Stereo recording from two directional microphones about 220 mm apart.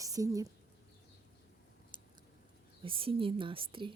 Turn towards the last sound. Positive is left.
turn(degrees=-25)  # may be behind; listen again after turning